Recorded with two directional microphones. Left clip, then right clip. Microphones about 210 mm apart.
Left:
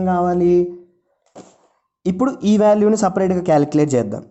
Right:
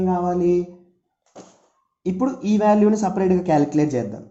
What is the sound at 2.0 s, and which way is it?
Speech, 40° left (ahead or behind).